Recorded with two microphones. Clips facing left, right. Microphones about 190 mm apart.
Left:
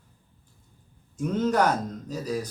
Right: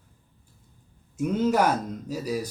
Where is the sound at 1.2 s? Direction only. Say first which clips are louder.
Right 1 dB; 10° right (ahead or behind).